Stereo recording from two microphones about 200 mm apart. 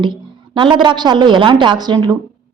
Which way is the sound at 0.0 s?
25° right (ahead or behind).